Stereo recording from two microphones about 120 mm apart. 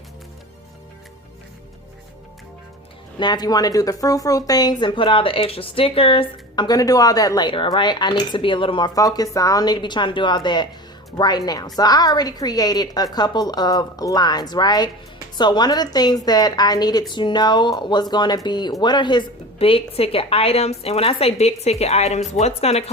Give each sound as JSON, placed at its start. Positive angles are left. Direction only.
{"t": 3.2, "sound": "speech", "side_deg": 35}
{"t": 6.7, "sound": "speech", "side_deg": 30}
{"t": 9.0, "sound": "speech", "side_deg": 30}
{"t": 19.5, "sound": "a woman's voice", "side_deg": 55}